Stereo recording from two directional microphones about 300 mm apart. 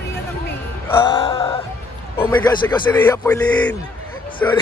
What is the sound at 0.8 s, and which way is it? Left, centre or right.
Music, centre.